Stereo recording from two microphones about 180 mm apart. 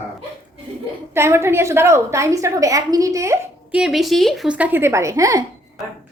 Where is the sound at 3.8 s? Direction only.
Centre (ahead or behind); by 5.4 s 20° right (ahead or behind).